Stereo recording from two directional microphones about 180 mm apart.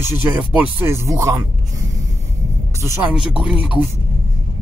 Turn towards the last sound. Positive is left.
turn(degrees=-5)  # may be behind; listen again after turning